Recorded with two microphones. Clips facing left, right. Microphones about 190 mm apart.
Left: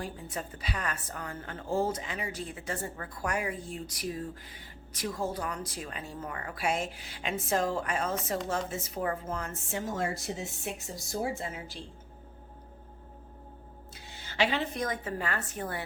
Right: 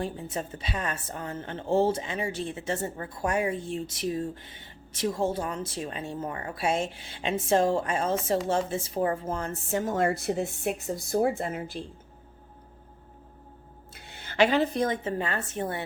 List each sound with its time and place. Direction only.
0.0 s a woman's voice: 25° right (ahead or behind); by 11.9 s 55° right (ahead or behind)
13.9 s a woman's voice: 60° right (ahead or behind); by 15.8 s 25° right (ahead or behind)